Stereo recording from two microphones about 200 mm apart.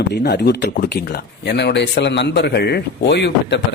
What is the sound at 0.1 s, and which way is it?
A man's voice, 55° left (ahead or behind).